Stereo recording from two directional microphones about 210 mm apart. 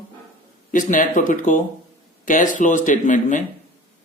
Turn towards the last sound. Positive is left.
turn(degrees=35)  # may be behind; listen again after turning